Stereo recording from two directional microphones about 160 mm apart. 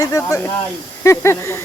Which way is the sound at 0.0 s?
20° left (ahead or behind).